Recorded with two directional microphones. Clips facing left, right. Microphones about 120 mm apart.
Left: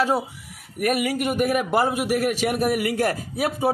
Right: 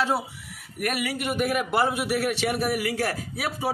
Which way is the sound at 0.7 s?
45° left (ahead or behind).